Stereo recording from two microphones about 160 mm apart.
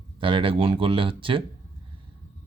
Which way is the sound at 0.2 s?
35° right (ahead or behind).